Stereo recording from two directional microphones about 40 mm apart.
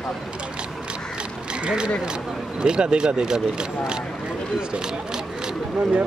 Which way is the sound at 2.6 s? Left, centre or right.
Right.